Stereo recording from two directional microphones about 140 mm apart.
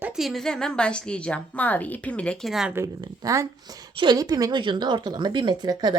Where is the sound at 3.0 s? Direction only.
25° right (ahead or behind).